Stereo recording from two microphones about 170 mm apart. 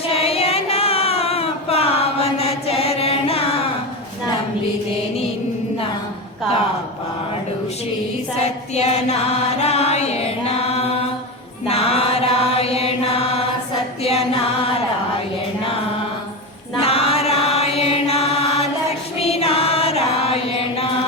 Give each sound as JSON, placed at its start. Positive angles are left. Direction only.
{"t": 0.1, "sound": "a sound", "side_deg": 35}
{"t": 8.4, "sound": "music", "side_deg": 40}
{"t": 11.7, "sound": "mantra", "side_deg": 35}
{"t": 14.0, "sound": "music", "side_deg": 35}
{"t": 16.8, "sound": "mantra", "side_deg": 35}
{"t": 19.2, "sound": "chant", "side_deg": 35}